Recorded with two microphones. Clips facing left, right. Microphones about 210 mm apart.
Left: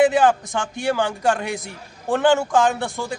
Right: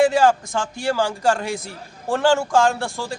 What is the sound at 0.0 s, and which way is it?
A man's voice, centre (ahead or behind).